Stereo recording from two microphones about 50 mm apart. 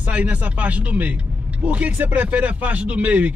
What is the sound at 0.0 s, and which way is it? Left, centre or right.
Speech, right.